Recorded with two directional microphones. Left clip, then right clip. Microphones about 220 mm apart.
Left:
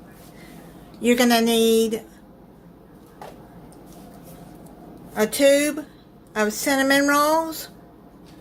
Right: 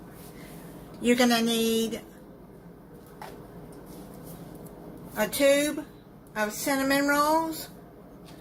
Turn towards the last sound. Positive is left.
turn(degrees=40)  # may be behind; listen again after turning